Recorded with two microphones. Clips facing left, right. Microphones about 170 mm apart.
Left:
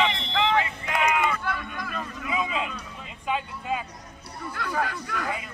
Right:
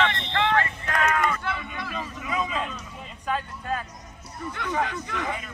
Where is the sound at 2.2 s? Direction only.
5° left (ahead or behind).